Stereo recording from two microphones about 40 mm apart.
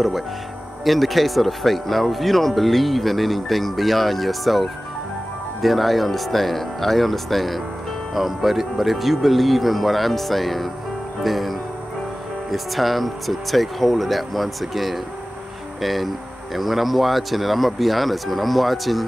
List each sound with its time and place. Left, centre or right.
0.8 s speech: centre